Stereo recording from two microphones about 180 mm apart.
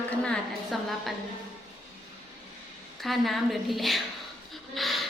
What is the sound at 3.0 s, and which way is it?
A woman's voice, centre (ahead or behind).